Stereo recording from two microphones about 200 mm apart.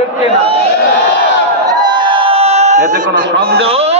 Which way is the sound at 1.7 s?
20° right (ahead or behind).